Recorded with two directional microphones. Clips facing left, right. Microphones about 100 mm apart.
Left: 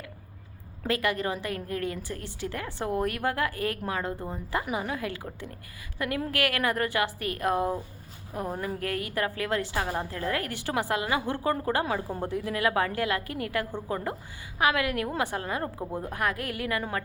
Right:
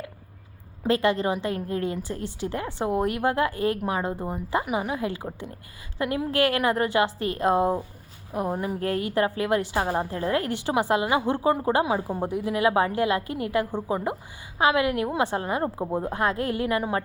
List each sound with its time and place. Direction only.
0.9 s a woman's voice: 25° right (ahead or behind)